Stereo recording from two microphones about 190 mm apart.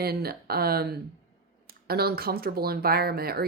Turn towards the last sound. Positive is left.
turn(degrees=-55)  # may be behind; listen again after turning